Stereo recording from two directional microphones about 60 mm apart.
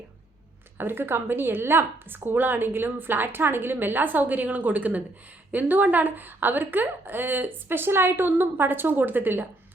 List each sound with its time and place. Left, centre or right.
0.8 s a woman's voice: right